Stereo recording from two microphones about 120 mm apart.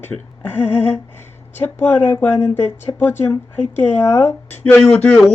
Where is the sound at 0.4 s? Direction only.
15° left (ahead or behind).